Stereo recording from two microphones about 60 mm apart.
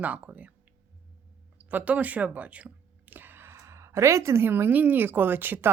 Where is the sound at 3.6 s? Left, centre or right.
Right.